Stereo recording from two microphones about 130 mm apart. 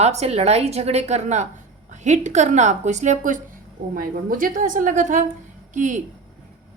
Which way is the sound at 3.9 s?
90° right.